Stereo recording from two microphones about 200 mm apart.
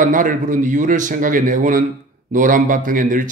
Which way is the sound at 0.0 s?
40° right (ahead or behind).